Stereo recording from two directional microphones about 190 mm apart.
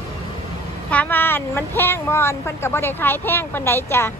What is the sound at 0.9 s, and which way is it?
Speech, 10° left (ahead or behind).